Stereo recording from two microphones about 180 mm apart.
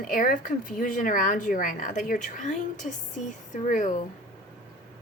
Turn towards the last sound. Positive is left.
turn(degrees=45)  # may be behind; listen again after turning